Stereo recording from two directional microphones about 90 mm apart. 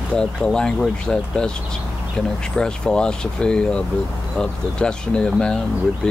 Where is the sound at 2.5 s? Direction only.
10° left (ahead or behind).